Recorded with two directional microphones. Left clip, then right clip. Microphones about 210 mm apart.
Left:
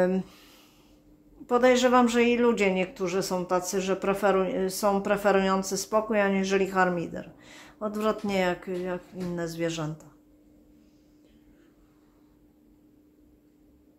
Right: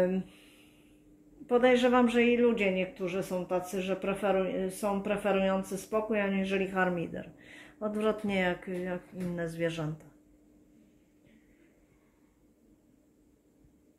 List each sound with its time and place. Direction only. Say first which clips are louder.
0.0 s speech: left 4 dB; 20° left (ahead or behind)
1.5 s speech: left 4 dB; 10° left (ahead or behind)